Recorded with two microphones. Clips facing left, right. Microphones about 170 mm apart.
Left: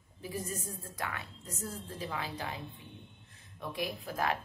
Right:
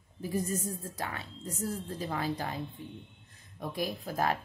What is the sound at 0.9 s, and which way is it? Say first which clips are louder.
A woman's voice: right 2 dB; 30° right (ahead or behind).